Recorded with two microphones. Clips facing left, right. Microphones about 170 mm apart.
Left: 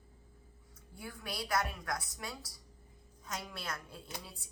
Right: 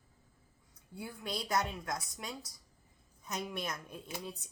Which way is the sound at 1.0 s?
20° right (ahead or behind).